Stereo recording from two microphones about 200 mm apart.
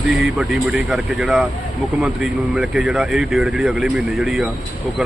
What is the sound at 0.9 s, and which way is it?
Speech, 5° right (ahead or behind).